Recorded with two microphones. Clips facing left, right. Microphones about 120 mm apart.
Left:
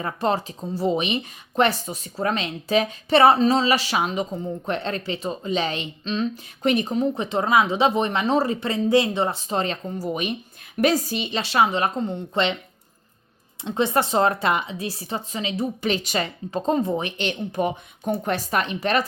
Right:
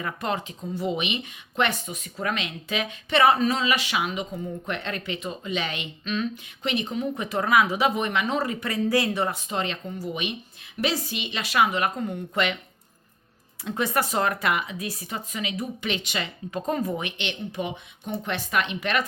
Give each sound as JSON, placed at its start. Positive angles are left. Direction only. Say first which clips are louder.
{"t": 0.0, "sound": "speech", "louder": "left 5 dB", "side_deg": 35}
{"t": 6.6, "sound": "a woman's voice", "louder": "left 6 dB", "side_deg": 40}
{"t": 13.7, "sound": "speech", "louder": "left 4 dB", "side_deg": 25}